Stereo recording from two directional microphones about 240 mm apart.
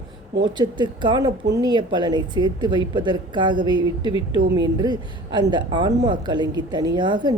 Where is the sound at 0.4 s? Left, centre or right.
Centre.